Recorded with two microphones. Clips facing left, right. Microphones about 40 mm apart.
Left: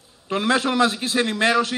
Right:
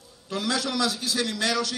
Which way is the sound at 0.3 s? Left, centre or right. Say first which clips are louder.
Left 7 dB; left.